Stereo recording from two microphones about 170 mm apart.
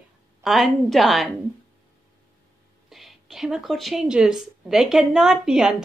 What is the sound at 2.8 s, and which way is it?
A woman's voice, centre (ahead or behind).